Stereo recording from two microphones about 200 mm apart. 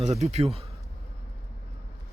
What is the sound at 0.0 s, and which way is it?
Speech, 35° right (ahead or behind).